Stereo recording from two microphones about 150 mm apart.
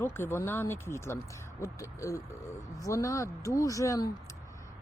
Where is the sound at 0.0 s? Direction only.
15° left (ahead or behind).